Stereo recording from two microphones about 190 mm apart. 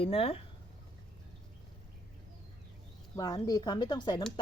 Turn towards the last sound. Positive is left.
turn(degrees=25)  # may be behind; listen again after turning